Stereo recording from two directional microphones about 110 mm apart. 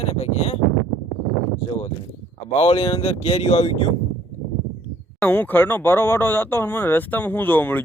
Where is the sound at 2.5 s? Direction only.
60° left (ahead or behind).